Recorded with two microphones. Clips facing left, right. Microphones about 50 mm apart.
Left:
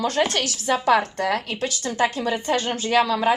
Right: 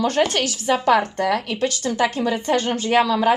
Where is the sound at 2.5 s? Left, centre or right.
Right.